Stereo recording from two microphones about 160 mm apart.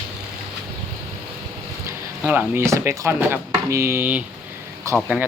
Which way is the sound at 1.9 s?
10° right (ahead or behind).